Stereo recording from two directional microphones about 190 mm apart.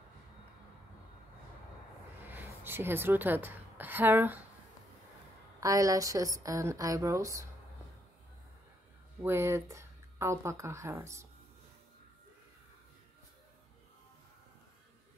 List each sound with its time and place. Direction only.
2.2 s a woman's voice: 10° right (ahead or behind)
5.6 s speech: 20° right (ahead or behind)
9.2 s speech: 15° right (ahead or behind)